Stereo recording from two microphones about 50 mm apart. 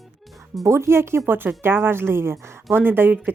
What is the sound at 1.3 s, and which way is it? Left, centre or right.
Speech, right.